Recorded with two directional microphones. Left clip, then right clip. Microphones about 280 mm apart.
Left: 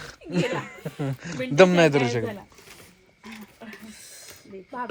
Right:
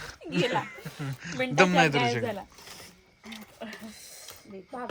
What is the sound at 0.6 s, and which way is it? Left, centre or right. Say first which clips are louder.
Speech: left 5 dB; centre.